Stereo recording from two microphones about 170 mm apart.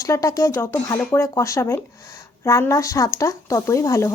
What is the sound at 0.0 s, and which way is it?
Speech, 20° left (ahead or behind).